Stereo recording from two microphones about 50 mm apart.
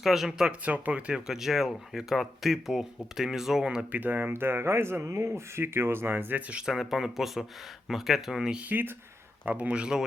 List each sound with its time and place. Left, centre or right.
0.0 s speech: centre
0.6 s speech: right
1.1 s speech: centre
3.9 s speech: right
4.4 s speech: right
5.0 s speech: right
5.5 s speech: right
6.7 s speech: centre
8.7 s speech: right